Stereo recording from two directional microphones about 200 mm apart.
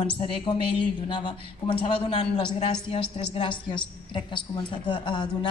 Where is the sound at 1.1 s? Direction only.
25° left (ahead or behind).